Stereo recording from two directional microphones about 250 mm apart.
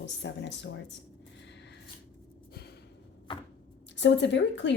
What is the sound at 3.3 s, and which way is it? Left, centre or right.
Chopping, centre.